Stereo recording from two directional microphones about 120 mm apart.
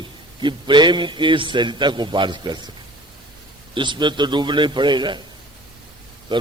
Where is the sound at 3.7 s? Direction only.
40° right (ahead or behind).